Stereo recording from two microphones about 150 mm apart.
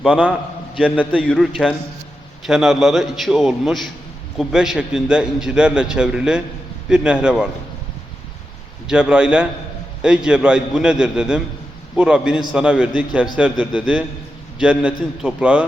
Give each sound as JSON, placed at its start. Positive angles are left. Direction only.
{"t": 0.0, "sound": "a man's voice", "side_deg": -5}
{"t": 8.9, "sound": "a man's voice", "side_deg": -10}